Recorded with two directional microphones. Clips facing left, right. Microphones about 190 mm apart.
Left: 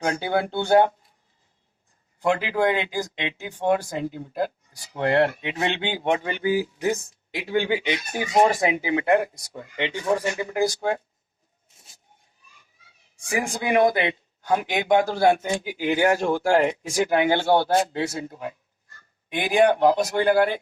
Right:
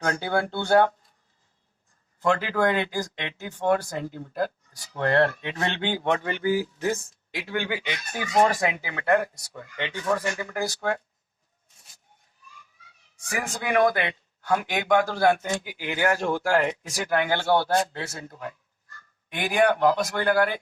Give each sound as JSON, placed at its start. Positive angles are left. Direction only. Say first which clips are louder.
{"t": 0.0, "sound": "speech", "louder": "left 2 dB", "side_deg": 15}
{"t": 2.2, "sound": "speech", "louder": "left 1 dB", "side_deg": 15}
{"t": 13.2, "sound": "speech", "louder": "left 4 dB", "side_deg": 10}